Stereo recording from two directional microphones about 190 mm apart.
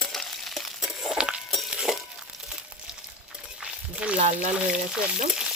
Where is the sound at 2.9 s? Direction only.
5° right (ahead or behind).